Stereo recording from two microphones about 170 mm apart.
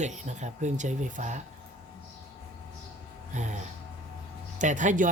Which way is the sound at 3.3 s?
45° right (ahead or behind).